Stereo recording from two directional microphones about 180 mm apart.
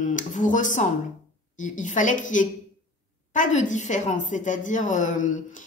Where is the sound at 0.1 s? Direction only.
45° left (ahead or behind).